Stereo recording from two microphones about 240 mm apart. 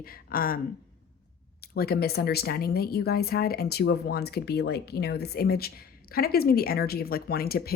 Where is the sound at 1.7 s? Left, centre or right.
Left.